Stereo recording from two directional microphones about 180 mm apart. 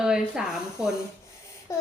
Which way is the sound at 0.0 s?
5° right (ahead or behind).